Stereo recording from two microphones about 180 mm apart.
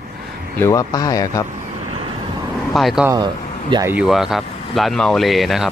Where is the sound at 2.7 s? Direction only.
Centre (ahead or behind).